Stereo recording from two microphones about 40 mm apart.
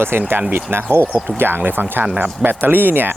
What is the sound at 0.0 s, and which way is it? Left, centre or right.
Speech, right.